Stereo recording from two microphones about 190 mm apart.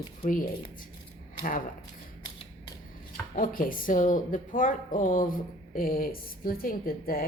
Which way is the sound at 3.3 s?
45° left (ahead or behind).